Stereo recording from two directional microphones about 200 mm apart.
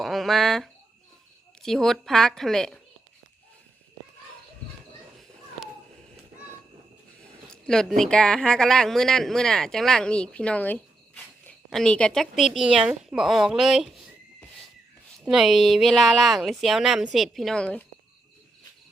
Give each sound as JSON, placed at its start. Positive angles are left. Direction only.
{"t": 0.0, "sound": "a sound", "side_deg": 0}
{"t": 1.6, "sound": "speech", "side_deg": 0}
{"t": 7.5, "sound": "speech", "side_deg": 5}
{"t": 15.2, "sound": "speech", "side_deg": 0}